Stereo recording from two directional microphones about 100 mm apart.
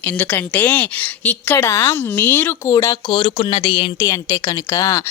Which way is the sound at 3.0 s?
65° left (ahead or behind).